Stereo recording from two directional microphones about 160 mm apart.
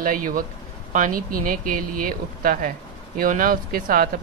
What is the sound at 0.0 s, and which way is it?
Speech, 60° right (ahead or behind).